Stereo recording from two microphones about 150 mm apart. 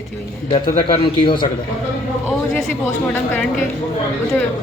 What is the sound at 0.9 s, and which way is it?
Speech, 35° left (ahead or behind).